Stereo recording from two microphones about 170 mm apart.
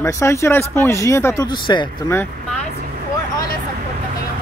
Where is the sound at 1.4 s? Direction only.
30° left (ahead or behind).